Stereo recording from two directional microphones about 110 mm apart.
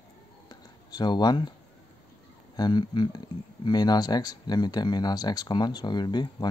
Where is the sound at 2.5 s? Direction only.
40° left (ahead or behind).